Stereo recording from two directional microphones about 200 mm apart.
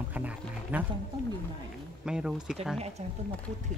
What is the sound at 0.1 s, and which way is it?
Music, 10° right (ahead or behind).